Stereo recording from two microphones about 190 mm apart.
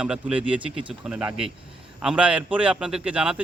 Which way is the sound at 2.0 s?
5° right (ahead or behind).